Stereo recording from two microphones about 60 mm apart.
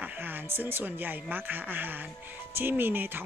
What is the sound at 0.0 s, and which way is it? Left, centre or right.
Speech, right.